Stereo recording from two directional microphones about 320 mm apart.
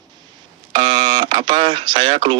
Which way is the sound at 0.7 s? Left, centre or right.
Centre.